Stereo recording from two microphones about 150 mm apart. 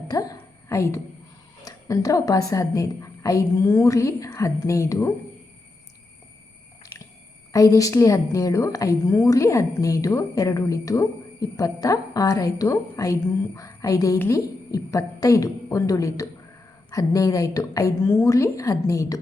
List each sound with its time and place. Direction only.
0.1 s a sound: 25° left (ahead or behind)
1.6 s a woman's voice: 20° left (ahead or behind)
7.5 s a woman's voice: 20° left (ahead or behind)